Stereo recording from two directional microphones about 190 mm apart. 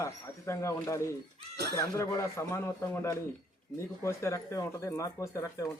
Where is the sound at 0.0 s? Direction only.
15° left (ahead or behind).